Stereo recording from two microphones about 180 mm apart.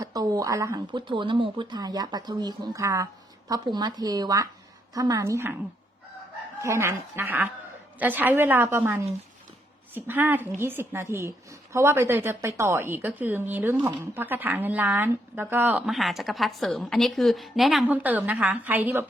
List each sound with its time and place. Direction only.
0.0 s a woman's voice: 20° right (ahead or behind)
6.6 s a woman's voice: 15° right (ahead or behind)